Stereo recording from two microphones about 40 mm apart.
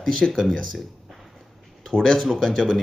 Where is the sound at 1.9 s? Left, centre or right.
Centre.